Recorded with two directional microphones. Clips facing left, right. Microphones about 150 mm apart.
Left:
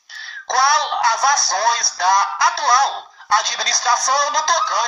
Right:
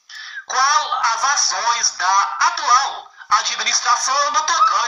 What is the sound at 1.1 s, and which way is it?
Speech, 55° left (ahead or behind).